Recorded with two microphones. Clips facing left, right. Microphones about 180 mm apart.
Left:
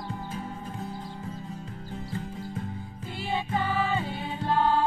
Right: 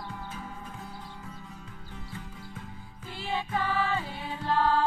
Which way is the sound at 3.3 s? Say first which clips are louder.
Left 1 dB; 25° left (ahead or behind).